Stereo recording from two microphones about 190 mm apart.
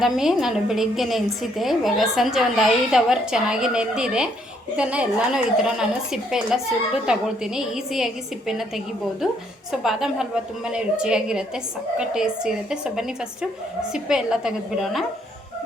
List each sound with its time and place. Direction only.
0.0 s a woman's voice: centre (ahead or behind)
9.8 s a woman's voice: centre (ahead or behind)